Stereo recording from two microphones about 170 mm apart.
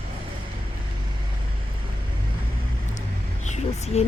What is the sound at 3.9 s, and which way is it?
Speech, 40° left (ahead or behind).